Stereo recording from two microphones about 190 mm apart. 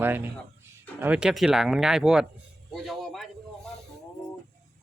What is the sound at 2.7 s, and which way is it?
Music, centre (ahead or behind).